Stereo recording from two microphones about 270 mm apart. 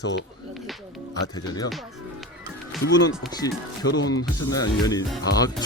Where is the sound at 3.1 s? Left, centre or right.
Centre.